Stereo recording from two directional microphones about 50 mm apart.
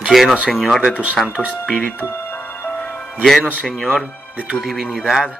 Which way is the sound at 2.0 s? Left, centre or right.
Left.